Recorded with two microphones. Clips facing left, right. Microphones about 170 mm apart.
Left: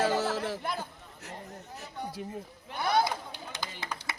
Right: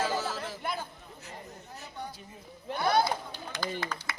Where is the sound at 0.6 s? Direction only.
Centre (ahead or behind).